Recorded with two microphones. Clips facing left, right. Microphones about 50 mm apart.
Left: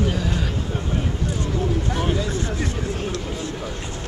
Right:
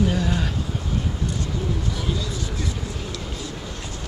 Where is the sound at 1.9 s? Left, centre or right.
Left.